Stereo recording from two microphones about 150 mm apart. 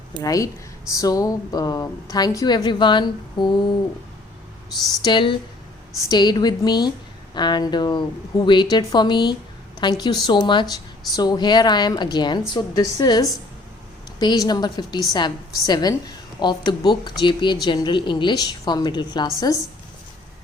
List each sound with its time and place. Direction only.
0.1 s a woman's voice: 25° left (ahead or behind)
5.0 s a woman's voice: 35° left (ahead or behind)